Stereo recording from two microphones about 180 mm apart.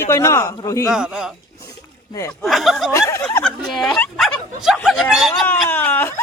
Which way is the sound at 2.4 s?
Centre (ahead or behind).